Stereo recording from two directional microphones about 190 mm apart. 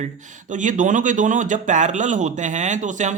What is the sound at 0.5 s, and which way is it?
Speech, 40° right (ahead or behind).